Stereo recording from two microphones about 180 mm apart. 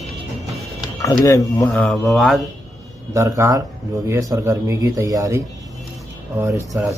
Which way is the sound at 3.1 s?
15° right (ahead or behind).